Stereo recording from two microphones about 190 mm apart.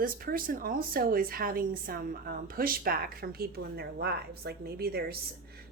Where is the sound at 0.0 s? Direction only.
50° right (ahead or behind).